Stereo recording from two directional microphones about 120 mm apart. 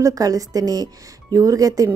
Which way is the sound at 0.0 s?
30° right (ahead or behind).